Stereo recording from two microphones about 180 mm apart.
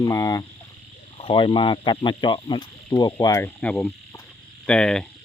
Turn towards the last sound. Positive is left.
turn(degrees=5)  # may be behind; listen again after turning